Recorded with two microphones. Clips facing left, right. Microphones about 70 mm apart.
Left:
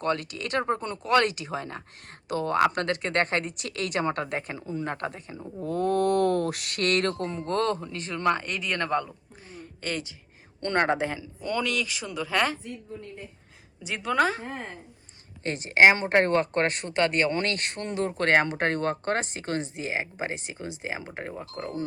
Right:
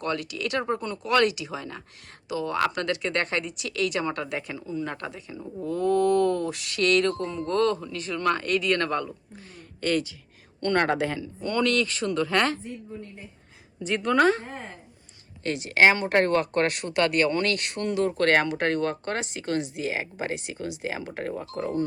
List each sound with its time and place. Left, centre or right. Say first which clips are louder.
0.0 s a woman's voice: left 1 dB; left
5.4 s speech: right 2 dB; centre
5.6 s a woman's voice: right 2 dB; left
8.4 s speech: right 5 dB; centre
9.6 s a sound: right 7 dB; left
10.6 s speech: right 1 dB; left
11.3 s speech: right 4 dB; centre
13.8 s speech: right 4 dB; centre
15.4 s a woman's voice: left 1 dB; left
18.4 s speech: right 1 dB; left